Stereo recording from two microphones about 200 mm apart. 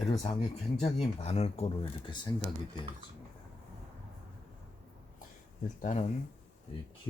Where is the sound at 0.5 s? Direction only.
30° left (ahead or behind).